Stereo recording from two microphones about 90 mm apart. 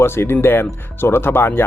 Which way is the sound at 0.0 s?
25° left (ahead or behind).